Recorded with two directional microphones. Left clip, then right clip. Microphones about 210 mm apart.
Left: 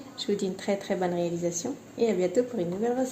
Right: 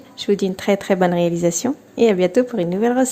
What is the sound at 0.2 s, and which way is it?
Speech, 30° right (ahead or behind).